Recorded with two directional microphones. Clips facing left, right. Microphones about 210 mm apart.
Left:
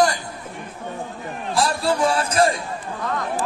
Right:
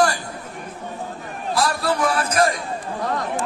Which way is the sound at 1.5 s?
25° left (ahead or behind).